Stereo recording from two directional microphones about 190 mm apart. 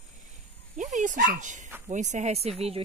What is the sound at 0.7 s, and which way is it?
Fowl, 40° right (ahead or behind).